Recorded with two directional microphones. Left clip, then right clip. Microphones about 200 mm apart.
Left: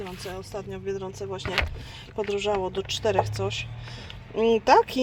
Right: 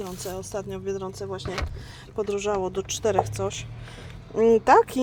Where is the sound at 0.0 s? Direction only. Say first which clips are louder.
Right 2 dB; 15° right (ahead or behind).